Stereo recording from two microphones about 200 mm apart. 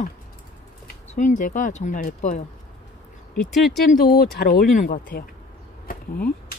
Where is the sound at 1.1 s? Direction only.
40° left (ahead or behind).